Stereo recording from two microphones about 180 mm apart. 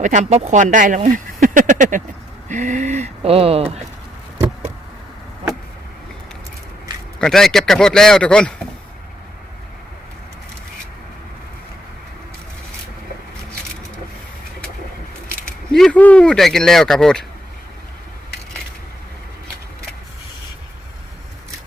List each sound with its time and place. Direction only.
0.0 s speech: 40° right (ahead or behind)
2.5 s a sound: 40° right (ahead or behind)
7.2 s speech: centre (ahead or behind)
15.7 s speech: 5° left (ahead or behind)